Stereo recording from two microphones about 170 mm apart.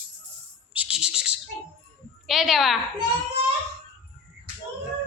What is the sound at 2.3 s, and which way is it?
Speech, centre (ahead or behind).